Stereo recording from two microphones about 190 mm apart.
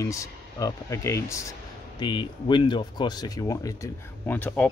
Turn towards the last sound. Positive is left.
turn(degrees=10)  # may be behind; listen again after turning